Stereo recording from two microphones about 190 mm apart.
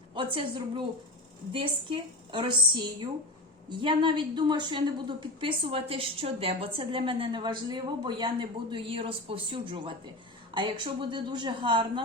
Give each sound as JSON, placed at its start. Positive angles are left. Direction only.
{"t": 0.1, "sound": "a woman's voice", "side_deg": -25}